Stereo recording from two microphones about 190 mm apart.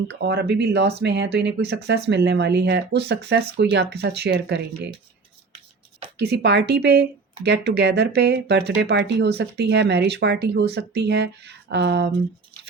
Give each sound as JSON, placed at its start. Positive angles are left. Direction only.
{"t": 0.1, "sound": "speech", "side_deg": -60}
{"t": 6.1, "sound": "speech", "side_deg": -60}